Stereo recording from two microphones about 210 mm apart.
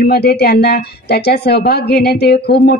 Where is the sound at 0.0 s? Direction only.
50° left (ahead or behind).